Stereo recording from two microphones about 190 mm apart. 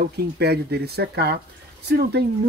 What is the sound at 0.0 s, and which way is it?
Speech, 60° right (ahead or behind).